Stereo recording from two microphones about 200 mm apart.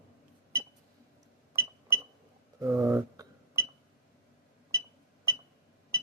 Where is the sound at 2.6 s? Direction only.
15° right (ahead or behind).